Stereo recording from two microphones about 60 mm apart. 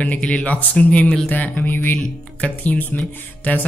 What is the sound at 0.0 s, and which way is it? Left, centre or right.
A man's voice, left.